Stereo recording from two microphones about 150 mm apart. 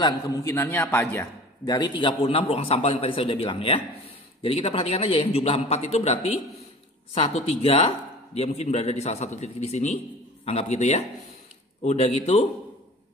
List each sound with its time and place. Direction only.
0.0 s a man's voice: 20° left (ahead or behind)
1.7 s a man's voice: 30° left (ahead or behind); by 6.1 s 45° left (ahead or behind)
7.2 s a man's voice: 45° left (ahead or behind)